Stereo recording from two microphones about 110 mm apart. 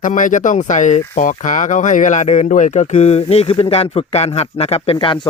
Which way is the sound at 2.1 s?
90° left.